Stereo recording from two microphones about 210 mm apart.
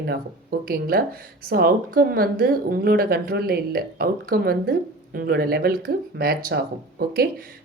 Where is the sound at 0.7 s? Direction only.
45° right (ahead or behind).